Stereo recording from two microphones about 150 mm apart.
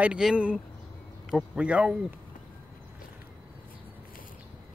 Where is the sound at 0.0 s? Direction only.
5° right (ahead or behind).